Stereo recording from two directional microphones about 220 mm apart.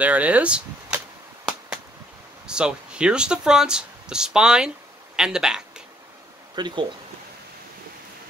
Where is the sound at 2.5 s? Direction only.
5° right (ahead or behind).